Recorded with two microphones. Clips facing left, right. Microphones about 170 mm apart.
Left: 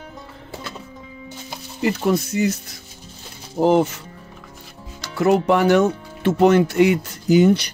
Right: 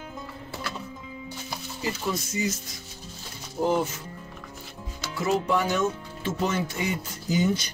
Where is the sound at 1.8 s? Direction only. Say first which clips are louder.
Left 11 dB; 65° left (ahead or behind).